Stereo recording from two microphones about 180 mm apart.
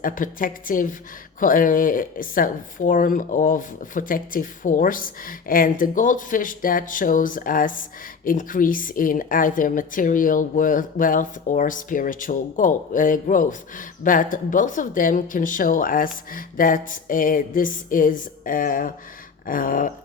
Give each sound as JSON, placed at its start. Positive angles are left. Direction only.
{"t": 0.0, "sound": "speech", "side_deg": 50}